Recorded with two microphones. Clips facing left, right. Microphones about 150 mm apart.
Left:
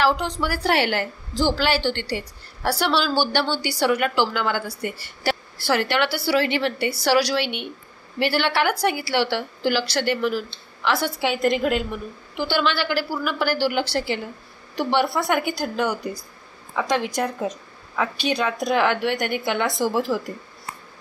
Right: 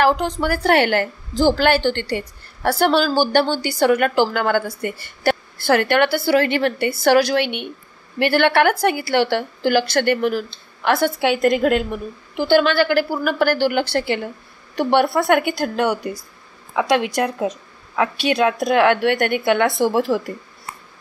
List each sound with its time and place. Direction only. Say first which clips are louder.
0.0 s a woman's voice: right 4 dB; 50° right (ahead or behind); by 16.0 s 65° right (ahead or behind)
16.7 s a woman's voice: right 5 dB; 80° right
17.9 s a woman's voice: right 5 dB; 70° right (ahead or behind)